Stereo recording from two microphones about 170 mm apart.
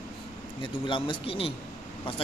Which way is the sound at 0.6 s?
30° left (ahead or behind).